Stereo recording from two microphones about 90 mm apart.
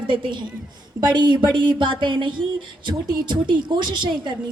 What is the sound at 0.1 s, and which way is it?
A woman's voice, 65° right (ahead or behind).